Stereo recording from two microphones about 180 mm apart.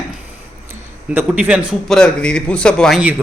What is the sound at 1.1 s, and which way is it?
Speech, 10° right (ahead or behind).